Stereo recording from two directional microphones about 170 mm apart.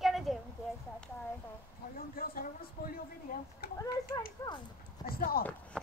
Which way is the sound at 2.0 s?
60° left (ahead or behind).